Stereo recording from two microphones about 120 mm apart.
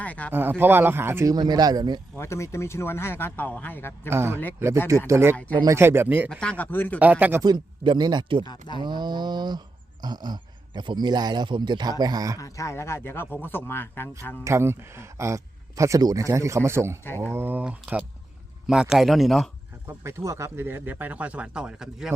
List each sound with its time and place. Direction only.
0.0 s a man's voice: 10° left (ahead or behind)
0.3 s speech: 15° right (ahead or behind)
1.3 s speech: 35° right (ahead or behind)
2.1 s speech: 25° left (ahead or behind)
4.1 s speech: 20° right (ahead or behind)
6.4 s speech: 10° left (ahead or behind)
7.0 s speech: 10° right (ahead or behind)
7.4 s speech: 35° right (ahead or behind)
8.4 s speech: 40° left (ahead or behind)
8.8 s speech: 40° right (ahead or behind)
12.4 s speech: 25° left (ahead or behind)
14.4 s speech: 20° right (ahead or behind); by 19.5 s centre (ahead or behind)
19.9 s speech: 25° right (ahead or behind); by 22.1 s 5° right (ahead or behind)